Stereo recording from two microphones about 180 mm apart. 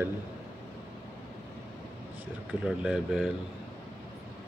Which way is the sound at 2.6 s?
5° right (ahead or behind).